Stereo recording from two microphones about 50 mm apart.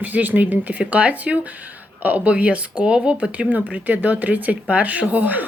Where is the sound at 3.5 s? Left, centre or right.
Right.